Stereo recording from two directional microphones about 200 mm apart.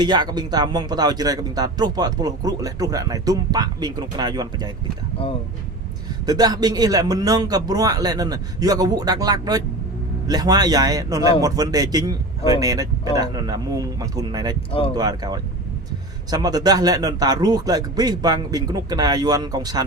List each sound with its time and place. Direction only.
0.0 s speech: 20° right (ahead or behind)
6.2 s a man's voice: 20° right (ahead or behind)